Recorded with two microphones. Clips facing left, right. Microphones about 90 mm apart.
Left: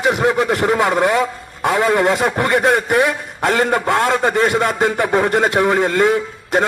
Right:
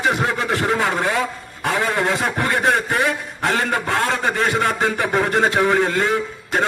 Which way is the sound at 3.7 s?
25° left (ahead or behind).